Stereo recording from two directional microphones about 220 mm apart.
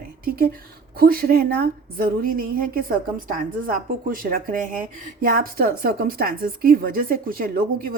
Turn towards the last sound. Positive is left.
turn(degrees=-45)  # may be behind; listen again after turning